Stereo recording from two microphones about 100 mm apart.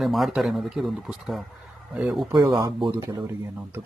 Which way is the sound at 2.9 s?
25° right (ahead or behind).